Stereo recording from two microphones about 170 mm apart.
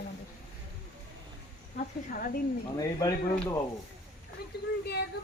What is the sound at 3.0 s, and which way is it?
Speech, 20° left (ahead or behind).